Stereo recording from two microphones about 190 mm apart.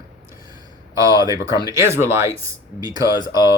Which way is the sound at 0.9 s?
20° right (ahead or behind).